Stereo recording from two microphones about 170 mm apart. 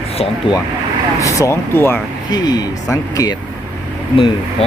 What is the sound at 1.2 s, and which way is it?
Speech, 20° left (ahead or behind).